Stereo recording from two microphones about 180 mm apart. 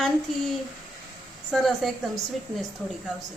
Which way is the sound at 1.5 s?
Centre (ahead or behind).